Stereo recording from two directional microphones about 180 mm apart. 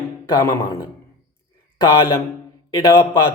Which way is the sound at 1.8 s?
15° left (ahead or behind).